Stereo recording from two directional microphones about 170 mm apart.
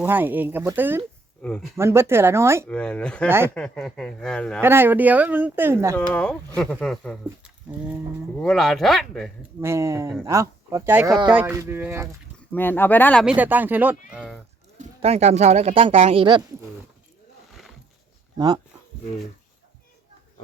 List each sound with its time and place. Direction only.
0.0 s speech: 10° right (ahead or behind)
1.4 s speech: 5° left (ahead or behind)
1.7 s speech: 15° right (ahead or behind)
2.6 s speech: 5° left (ahead or behind)
3.2 s speech: 15° right (ahead or behind)
3.5 s speech: 5° left (ahead or behind)
4.6 s speech: 15° right (ahead or behind)
6.0 s speech: 5° left (ahead or behind)
9.6 s speech: 15° right (ahead or behind)
12.5 s speech: 10° left (ahead or behind)
13.2 s speech: 10° right (ahead or behind)
14.8 s speech: 40° right (ahead or behind)
18.3 s speech: 25° right (ahead or behind)